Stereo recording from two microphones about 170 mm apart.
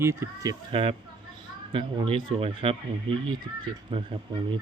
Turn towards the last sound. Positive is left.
turn(degrees=-30)  # may be behind; listen again after turning